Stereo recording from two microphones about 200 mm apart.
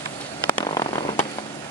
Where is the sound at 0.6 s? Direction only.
20° left (ahead or behind).